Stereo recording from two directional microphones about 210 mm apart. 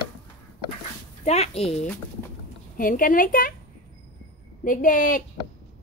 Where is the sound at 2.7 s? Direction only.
40° left (ahead or behind).